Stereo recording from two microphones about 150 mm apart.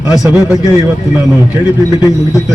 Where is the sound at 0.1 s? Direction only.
5° right (ahead or behind).